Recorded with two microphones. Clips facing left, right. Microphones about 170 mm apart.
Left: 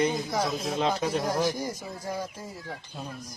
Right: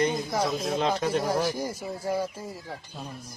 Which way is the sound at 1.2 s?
10° right (ahead or behind).